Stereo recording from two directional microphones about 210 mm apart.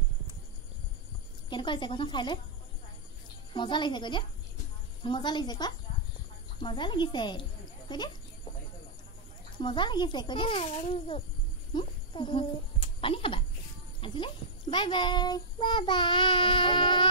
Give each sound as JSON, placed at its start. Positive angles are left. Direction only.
{"t": 1.5, "sound": "a child's voice", "side_deg": 20}
{"t": 3.5, "sound": "a child's voice", "side_deg": 20}
{"t": 9.6, "sound": "a child's voice", "side_deg": 20}